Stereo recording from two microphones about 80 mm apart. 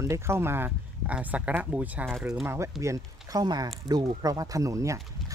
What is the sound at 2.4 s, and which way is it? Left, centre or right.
Speech, right.